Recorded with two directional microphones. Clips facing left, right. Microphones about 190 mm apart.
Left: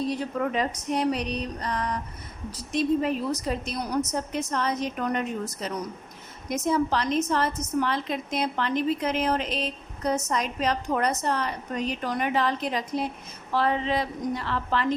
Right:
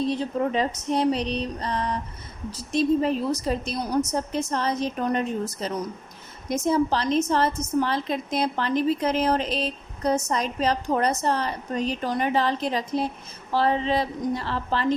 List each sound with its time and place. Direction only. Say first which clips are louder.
0.0 s a woman's voice: right 3 dB; 25° right (ahead or behind)